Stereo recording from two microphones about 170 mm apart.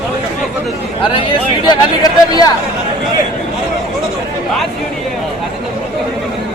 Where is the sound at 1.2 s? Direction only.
25° left (ahead or behind).